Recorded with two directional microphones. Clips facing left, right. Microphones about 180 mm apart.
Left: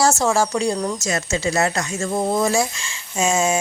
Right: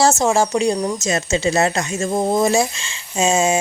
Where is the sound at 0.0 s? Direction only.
20° right (ahead or behind).